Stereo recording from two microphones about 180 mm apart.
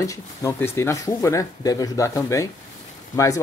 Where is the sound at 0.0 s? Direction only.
15° left (ahead or behind).